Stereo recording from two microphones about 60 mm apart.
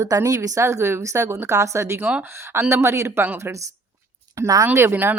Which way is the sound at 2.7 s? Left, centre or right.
Right.